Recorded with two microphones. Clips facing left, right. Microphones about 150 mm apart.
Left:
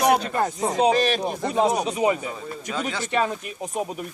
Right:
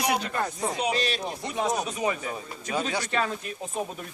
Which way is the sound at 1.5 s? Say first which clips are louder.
Left 7 dB; 35° left (ahead or behind).